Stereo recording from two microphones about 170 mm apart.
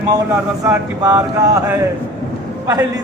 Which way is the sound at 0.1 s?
15° right (ahead or behind).